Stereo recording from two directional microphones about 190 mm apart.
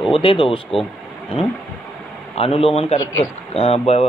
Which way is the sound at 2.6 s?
30° left (ahead or behind).